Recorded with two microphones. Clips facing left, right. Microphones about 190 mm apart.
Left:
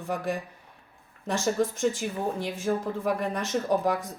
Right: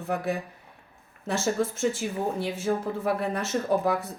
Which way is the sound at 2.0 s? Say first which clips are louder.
Right 1 dB; centre (ahead or behind).